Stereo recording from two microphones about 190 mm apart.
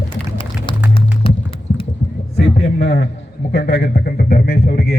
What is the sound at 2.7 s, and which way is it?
A man's voice, 60° left (ahead or behind).